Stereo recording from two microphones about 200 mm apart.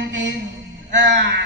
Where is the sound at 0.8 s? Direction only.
65° right (ahead or behind).